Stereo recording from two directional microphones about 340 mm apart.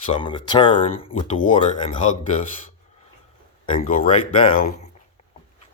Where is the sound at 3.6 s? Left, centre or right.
Centre.